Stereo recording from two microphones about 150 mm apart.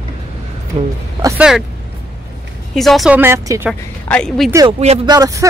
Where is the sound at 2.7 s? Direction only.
Centre (ahead or behind).